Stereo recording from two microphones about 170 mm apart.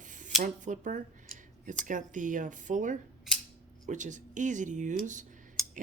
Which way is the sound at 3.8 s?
50° right (ahead or behind).